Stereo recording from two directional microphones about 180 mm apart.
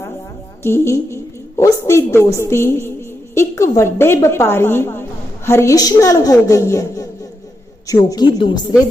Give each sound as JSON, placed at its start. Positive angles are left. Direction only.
{"t": 0.6, "sound": "a woman's voice", "side_deg": 15}